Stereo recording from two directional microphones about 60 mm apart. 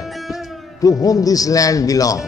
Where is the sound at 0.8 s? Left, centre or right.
Left.